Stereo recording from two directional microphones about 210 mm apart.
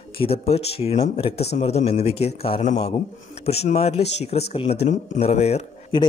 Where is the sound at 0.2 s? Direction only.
30° left (ahead or behind).